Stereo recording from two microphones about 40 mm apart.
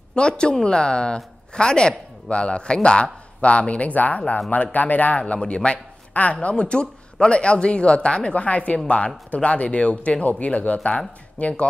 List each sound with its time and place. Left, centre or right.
0.1 s speech: left
5.4 s speech: left